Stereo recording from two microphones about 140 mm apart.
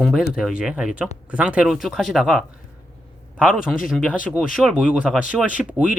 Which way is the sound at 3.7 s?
5° right (ahead or behind).